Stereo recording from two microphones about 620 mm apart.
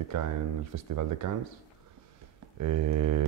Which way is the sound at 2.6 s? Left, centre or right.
Right.